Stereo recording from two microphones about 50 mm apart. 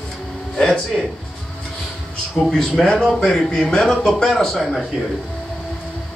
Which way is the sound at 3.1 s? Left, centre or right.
Centre.